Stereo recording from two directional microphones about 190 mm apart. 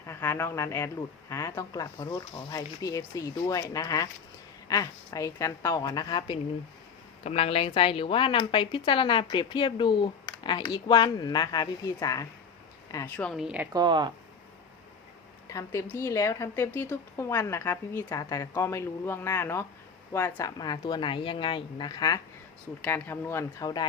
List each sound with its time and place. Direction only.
0.1 s a woman's voice: 15° left (ahead or behind); by 13.7 s 5° right (ahead or behind)
13.7 s speech: 25° right (ahead or behind)
15.4 s a woman's voice: 15° left (ahead or behind)
22.8 s a woman's voice: 10° left (ahead or behind)